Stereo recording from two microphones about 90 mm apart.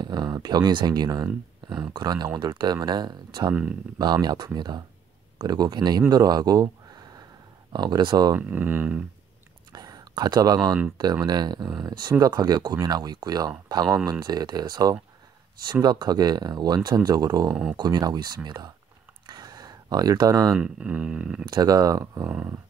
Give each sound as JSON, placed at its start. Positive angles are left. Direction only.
{"t": 0.0, "sound": "speech", "side_deg": -50}
{"t": 8.4, "sound": "speech", "side_deg": -20}
{"t": 9.7, "sound": "a sound", "side_deg": -45}
{"t": 11.0, "sound": "speech", "side_deg": -50}
{"t": 19.2, "sound": "a sound", "side_deg": -45}
{"t": 20.5, "sound": "speech", "side_deg": -10}
{"t": 21.5, "sound": "speech", "side_deg": -45}